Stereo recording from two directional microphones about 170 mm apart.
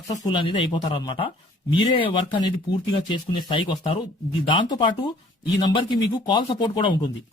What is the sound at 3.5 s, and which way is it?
Speech, 30° left (ahead or behind).